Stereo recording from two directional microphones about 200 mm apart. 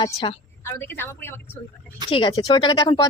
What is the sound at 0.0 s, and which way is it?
Speech, 25° left (ahead or behind).